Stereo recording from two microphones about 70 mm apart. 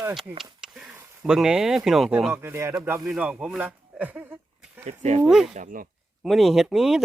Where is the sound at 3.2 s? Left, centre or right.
Centre.